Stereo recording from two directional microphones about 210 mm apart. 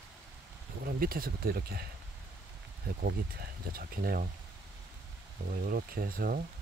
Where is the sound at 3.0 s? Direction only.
45° right (ahead or behind).